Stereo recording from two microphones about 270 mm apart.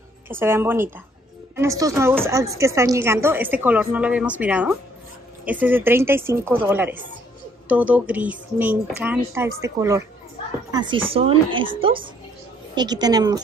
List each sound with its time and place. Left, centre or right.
0.3 s a woman's voice: centre